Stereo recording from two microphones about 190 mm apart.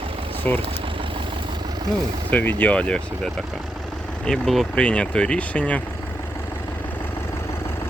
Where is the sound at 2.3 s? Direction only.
10° left (ahead or behind).